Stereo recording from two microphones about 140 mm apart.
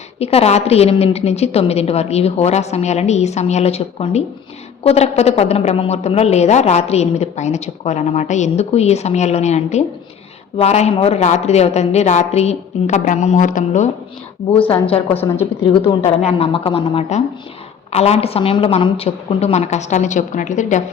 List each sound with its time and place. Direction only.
0.2 s speech: 45° left (ahead or behind); by 13.9 s 60° left (ahead or behind)
14.8 s speech: 45° left (ahead or behind); by 20.8 s 60° left (ahead or behind)